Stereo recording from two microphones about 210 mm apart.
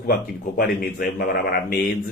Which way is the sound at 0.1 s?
45° left (ahead or behind).